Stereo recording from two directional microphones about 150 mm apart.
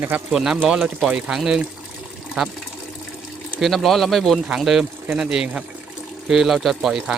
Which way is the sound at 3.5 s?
Centre (ahead or behind).